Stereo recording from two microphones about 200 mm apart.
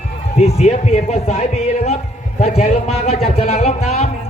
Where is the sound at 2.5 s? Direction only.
30° left (ahead or behind).